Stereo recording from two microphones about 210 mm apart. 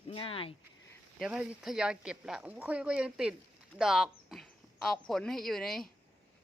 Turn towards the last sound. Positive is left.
turn(degrees=0)  # may be behind; listen again after turning